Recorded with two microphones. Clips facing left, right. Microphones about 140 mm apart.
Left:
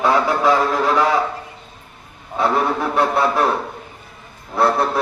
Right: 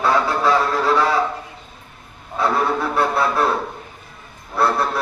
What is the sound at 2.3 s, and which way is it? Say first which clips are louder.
A man's voice: left 1 dB; 20° left (ahead or behind).